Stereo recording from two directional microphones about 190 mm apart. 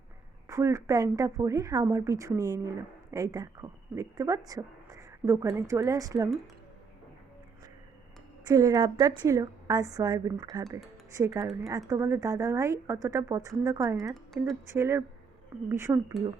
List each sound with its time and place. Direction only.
0.4 s a woman's voice: 15° right (ahead or behind)
8.4 s a woman's voice: 20° right (ahead or behind)